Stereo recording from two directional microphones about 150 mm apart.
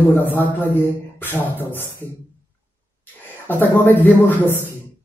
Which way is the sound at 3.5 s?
10° left (ahead or behind).